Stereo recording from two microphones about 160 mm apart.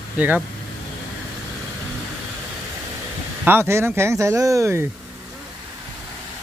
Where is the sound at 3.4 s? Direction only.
15° right (ahead or behind).